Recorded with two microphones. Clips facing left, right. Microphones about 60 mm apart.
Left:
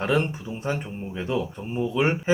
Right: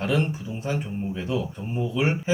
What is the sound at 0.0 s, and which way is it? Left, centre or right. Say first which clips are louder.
Speech: left 1 dB; left.